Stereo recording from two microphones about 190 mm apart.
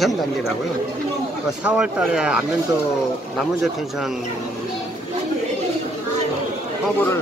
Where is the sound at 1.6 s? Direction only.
5° right (ahead or behind).